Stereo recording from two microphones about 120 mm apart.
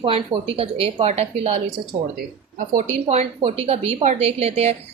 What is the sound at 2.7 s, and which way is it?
Speech, 65° right (ahead or behind).